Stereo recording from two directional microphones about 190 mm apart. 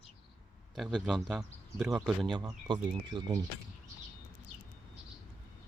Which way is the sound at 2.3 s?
20° right (ahead or behind).